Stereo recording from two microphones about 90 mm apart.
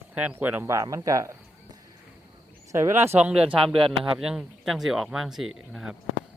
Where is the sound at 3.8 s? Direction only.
90° right.